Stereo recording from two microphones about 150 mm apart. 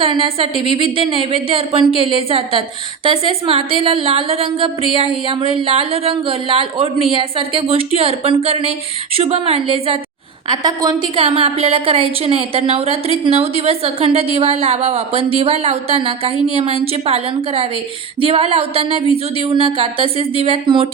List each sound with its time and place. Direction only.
0.0 s a woman's voice: 35° right (ahead or behind)
10.5 s a woman's voice: 25° right (ahead or behind)